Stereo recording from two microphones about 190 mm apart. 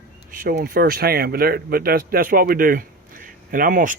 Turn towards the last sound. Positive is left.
turn(degrees=-45)  # may be behind; listen again after turning